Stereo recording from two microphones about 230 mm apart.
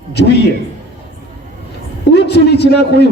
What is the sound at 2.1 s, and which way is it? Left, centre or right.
Speech, left.